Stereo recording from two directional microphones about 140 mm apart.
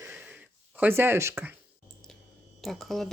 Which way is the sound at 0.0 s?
10° right (ahead or behind).